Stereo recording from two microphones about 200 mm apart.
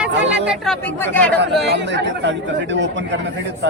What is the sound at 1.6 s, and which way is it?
Speech, 60° right (ahead or behind).